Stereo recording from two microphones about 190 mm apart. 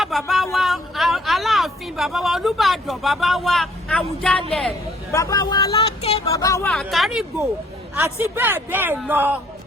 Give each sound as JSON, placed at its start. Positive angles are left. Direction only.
{"t": 0.0, "sound": "a sound", "side_deg": 0}
{"t": 5.1, "sound": "speech", "side_deg": 15}
{"t": 5.7, "sound": "a sound", "side_deg": 35}
{"t": 6.2, "sound": "speech", "side_deg": 15}
{"t": 6.7, "sound": "speech", "side_deg": 0}
{"t": 7.9, "sound": "a man's voice", "side_deg": -10}